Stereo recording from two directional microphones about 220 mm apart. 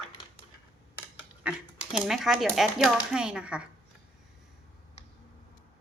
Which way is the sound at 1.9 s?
Centre (ahead or behind).